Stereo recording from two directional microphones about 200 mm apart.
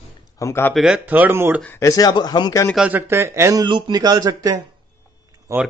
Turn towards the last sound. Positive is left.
turn(degrees=-15)  # may be behind; listen again after turning